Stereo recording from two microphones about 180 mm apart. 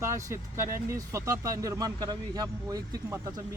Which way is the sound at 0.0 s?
15° right (ahead or behind).